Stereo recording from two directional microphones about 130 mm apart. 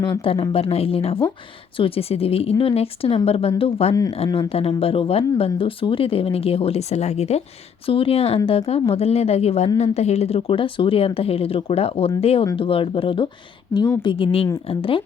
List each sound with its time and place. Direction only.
0.0 s a woman's voice: 40° left (ahead or behind)